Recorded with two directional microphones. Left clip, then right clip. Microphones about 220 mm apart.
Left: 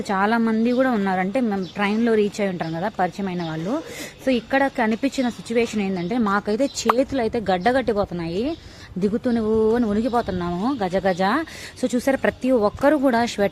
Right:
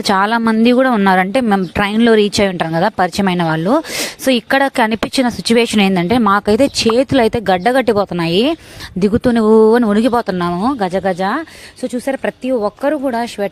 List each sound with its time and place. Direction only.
0.0 s speech: 45° right (ahead or behind); by 13.5 s 10° right (ahead or behind)